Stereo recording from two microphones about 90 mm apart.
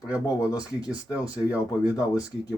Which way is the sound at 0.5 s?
45° left (ahead or behind).